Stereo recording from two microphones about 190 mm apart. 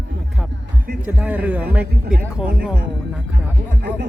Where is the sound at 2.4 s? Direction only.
60° right (ahead or behind).